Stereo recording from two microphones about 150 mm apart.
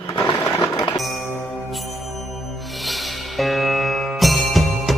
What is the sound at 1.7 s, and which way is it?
Music, centre (ahead or behind).